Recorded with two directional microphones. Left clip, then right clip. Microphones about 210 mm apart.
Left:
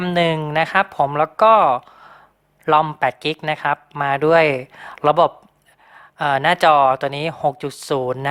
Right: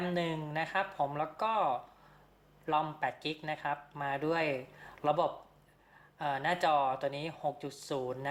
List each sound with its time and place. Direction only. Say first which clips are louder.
0.0 s speech: left 16 dB; 45° left (ahead or behind)